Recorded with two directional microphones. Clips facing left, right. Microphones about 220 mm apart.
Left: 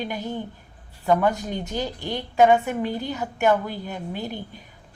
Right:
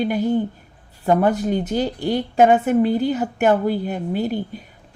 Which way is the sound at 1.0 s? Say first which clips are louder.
Right 4 dB; 45° right (ahead or behind).